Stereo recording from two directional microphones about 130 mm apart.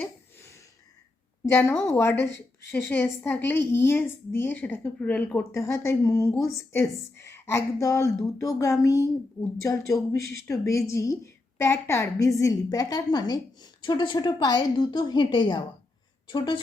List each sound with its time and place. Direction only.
1.5 s a woman's voice: 15° left (ahead or behind); by 16.6 s 35° left (ahead or behind)